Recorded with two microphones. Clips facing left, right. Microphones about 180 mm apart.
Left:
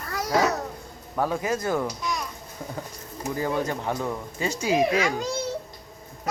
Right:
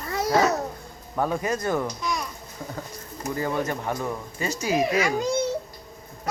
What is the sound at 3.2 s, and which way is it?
Speech, 15° left (ahead or behind).